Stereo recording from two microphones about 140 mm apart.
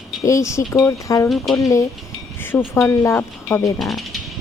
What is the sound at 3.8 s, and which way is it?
Speech, centre (ahead or behind).